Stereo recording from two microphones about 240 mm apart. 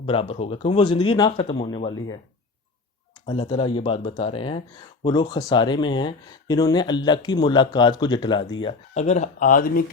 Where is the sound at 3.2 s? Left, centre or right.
Left.